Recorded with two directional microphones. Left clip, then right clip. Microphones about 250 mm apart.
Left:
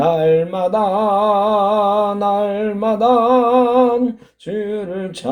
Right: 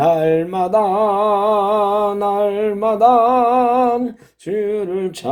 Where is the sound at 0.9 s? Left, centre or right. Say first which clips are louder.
Left 1 dB; right.